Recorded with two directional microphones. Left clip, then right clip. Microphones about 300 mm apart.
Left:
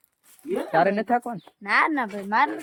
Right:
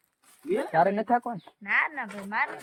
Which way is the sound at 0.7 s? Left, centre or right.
Centre.